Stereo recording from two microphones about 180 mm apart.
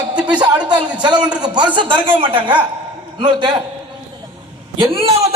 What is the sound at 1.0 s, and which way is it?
Speech, 25° right (ahead or behind).